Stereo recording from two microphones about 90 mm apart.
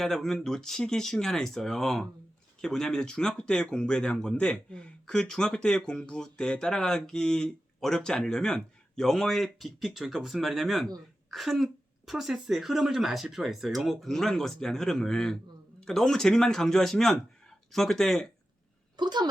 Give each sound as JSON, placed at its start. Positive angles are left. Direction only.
{"t": 0.0, "sound": "speech", "side_deg": 5}
{"t": 18.9, "sound": "speech", "side_deg": -55}